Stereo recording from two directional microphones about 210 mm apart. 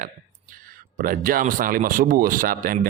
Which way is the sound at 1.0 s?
40° right (ahead or behind).